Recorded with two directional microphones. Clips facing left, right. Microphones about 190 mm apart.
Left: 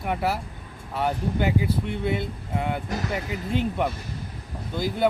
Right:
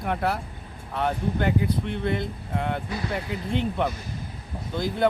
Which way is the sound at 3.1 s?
5° left (ahead or behind).